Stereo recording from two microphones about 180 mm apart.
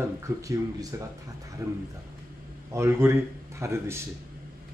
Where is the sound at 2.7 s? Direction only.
15° right (ahead or behind).